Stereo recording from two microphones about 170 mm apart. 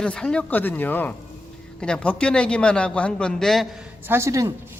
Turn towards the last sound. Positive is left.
turn(degrees=-20)  # may be behind; listen again after turning